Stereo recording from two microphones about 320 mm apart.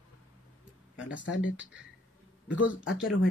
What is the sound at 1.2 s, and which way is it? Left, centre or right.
Speech, left.